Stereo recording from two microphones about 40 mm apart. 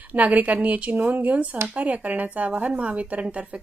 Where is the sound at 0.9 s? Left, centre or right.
Right.